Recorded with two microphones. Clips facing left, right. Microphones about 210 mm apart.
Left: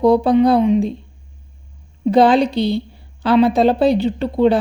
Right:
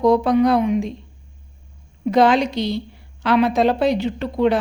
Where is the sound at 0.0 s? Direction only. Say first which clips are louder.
Left 3 dB; 30° left (ahead or behind).